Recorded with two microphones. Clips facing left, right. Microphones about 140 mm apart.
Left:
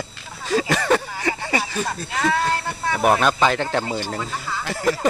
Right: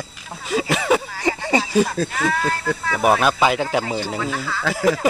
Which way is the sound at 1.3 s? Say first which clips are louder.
Right 3 dB; 20° right (ahead or behind).